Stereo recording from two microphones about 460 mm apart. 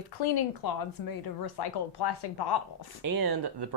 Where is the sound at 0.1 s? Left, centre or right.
Left.